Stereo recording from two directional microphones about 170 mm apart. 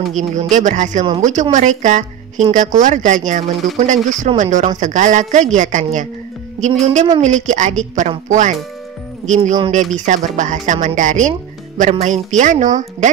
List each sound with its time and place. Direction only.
0.1 s a woman's voice: 45° right (ahead or behind)